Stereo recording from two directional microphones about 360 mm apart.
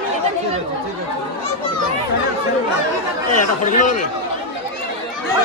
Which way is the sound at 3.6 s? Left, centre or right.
Left.